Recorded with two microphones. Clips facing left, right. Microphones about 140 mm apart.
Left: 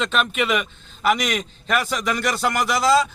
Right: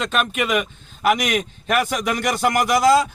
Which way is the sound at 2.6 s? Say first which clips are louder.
Right 5 dB; 50° right (ahead or behind).